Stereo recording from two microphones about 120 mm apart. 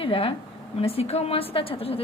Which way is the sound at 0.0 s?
50° left (ahead or behind).